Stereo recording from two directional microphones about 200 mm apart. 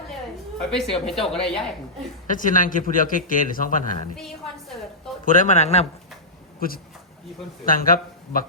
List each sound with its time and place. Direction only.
0.8 s speech: centre (ahead or behind)
2.2 s a man's voice: 40° left (ahead or behind)
5.2 s a man's voice: 40° left (ahead or behind)
7.6 s speech: 45° left (ahead or behind)